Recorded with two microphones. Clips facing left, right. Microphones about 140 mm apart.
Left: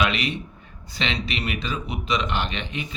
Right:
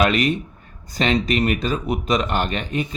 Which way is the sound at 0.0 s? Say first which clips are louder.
Right 6 dB; 45° right (ahead or behind).